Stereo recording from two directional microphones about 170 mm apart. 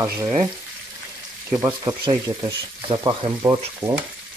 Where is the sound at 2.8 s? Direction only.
25° right (ahead or behind).